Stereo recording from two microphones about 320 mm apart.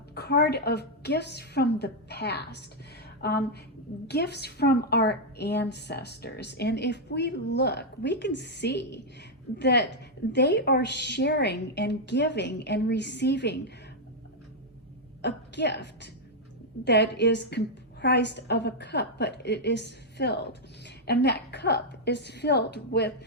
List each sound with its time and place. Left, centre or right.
0.1 s a woman's voice: left
15.2 s a woman's voice: left